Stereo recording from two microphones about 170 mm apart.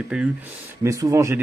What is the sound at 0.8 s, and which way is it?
Speech, 20° right (ahead or behind).